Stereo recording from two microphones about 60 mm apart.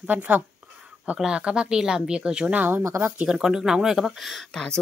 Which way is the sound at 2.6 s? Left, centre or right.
Right.